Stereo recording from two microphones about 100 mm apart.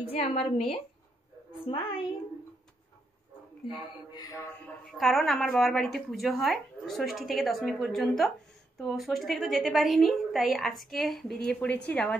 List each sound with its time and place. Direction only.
0.0 s a woman's voice: 85° left
1.7 s a woman's voice: 65° left (ahead or behind)
4.9 s a woman's voice: centre (ahead or behind)